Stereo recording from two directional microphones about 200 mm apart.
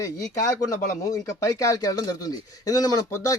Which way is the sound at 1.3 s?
15° left (ahead or behind).